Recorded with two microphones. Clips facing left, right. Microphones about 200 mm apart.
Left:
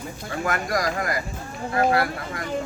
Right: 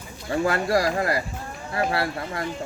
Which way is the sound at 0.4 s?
30° right (ahead or behind).